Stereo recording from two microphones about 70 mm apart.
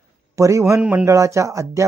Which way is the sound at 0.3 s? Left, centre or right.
Right.